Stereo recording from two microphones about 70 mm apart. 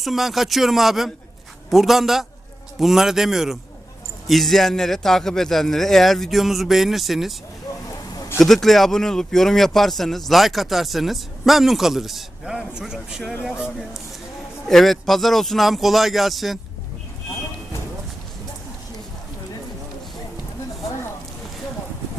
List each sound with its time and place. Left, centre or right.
0.0 s speech: centre
8.4 s speech: centre